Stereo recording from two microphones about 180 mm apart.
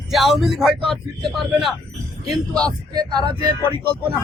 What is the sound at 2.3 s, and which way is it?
Speech, 5° left (ahead or behind).